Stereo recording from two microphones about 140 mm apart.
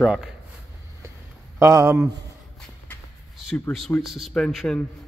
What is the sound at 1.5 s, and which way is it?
Speech, 20° right (ahead or behind).